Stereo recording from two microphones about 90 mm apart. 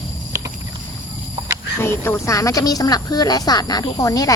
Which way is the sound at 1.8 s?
25° left (ahead or behind).